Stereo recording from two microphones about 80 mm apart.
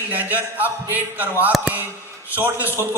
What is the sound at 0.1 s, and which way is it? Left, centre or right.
A man's voice, right.